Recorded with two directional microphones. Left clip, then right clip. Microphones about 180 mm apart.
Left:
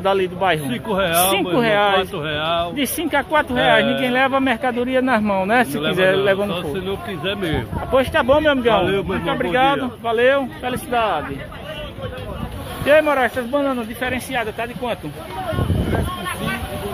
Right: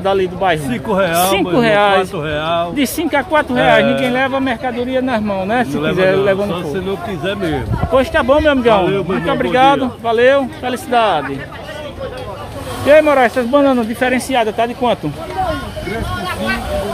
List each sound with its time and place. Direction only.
0.0 s speech: 15° left (ahead or behind)
2.1 s speech: 15° left (ahead or behind)
2.7 s speech: centre (ahead or behind)
4.1 s speech: 15° left (ahead or behind)
5.8 s speech: 5° left (ahead or behind)
12.8 s speech: 10° right (ahead or behind); by 15.0 s 35° right (ahead or behind)